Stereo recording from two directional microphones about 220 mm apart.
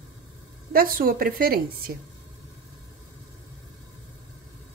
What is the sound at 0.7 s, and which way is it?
A woman's voice, 40° right (ahead or behind).